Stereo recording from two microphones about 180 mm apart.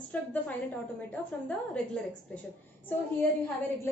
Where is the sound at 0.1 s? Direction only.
10° left (ahead or behind).